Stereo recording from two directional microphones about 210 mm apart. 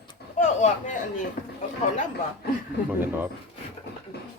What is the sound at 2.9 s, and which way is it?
Speech, 10° right (ahead or behind).